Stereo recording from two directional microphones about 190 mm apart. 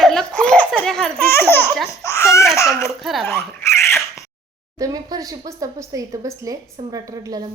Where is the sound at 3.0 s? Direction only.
Centre (ahead or behind).